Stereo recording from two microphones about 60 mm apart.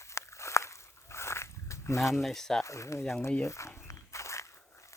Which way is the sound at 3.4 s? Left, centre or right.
Left.